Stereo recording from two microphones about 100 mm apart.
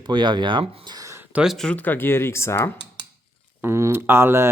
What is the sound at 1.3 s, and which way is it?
Speech, 10° right (ahead or behind).